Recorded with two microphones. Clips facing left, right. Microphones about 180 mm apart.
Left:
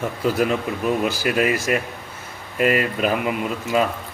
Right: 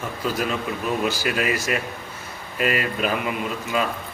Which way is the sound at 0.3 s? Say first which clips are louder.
Left 5 dB; 60° left (ahead or behind).